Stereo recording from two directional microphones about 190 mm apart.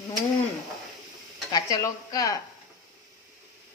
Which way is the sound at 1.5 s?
15° left (ahead or behind).